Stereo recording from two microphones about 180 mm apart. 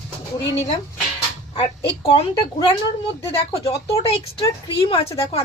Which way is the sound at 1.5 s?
30° left (ahead or behind).